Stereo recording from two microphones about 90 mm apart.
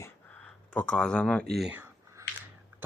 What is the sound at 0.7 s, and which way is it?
Speech, 10° left (ahead or behind).